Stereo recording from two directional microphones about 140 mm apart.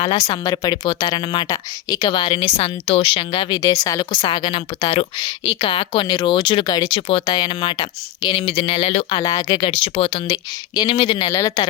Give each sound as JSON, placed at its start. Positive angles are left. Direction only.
{"t": 0.3, "sound": "speech", "side_deg": 25}
{"t": 2.6, "sound": "speech", "side_deg": 45}
{"t": 9.1, "sound": "speech", "side_deg": 30}
{"t": 9.6, "sound": "speech", "side_deg": 40}
{"t": 10.2, "sound": "speech", "side_deg": 30}